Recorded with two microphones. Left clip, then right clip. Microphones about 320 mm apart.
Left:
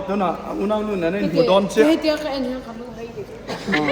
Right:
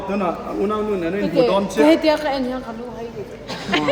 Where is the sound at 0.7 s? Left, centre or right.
Centre.